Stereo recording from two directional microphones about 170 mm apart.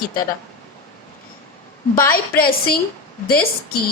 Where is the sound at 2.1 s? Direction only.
60° left (ahead or behind).